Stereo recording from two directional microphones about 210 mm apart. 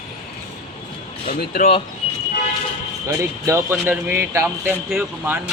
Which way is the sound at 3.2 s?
15° right (ahead or behind).